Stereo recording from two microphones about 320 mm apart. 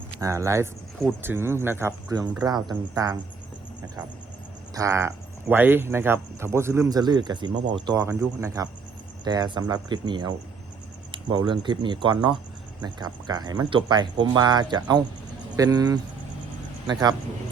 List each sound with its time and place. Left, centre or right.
0.2 s speech: centre
4.7 s speech: centre